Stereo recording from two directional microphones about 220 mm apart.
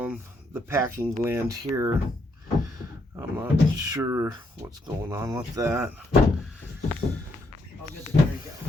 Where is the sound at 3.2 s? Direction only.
15° right (ahead or behind).